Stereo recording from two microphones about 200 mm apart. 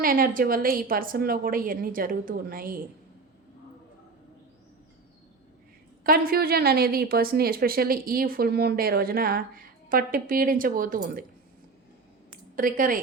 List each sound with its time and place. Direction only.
0.0 s a woman's voice: 45° right (ahead or behind)
6.0 s a woman's voice: 45° right (ahead or behind)
12.5 s a woman's voice: 45° right (ahead or behind)